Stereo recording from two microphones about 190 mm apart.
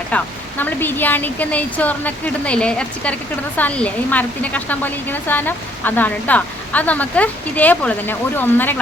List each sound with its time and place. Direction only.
0.6 s a woman's voice: 10° left (ahead or behind)